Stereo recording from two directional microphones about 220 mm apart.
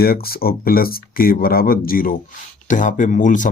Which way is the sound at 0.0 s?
45° left (ahead or behind).